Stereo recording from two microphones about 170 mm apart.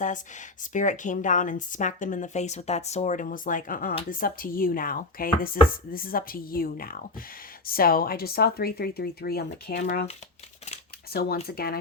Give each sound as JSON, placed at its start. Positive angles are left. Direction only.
{"t": 0.6, "sound": "speech", "side_deg": 50}
{"t": 11.1, "sound": "speech", "side_deg": 65}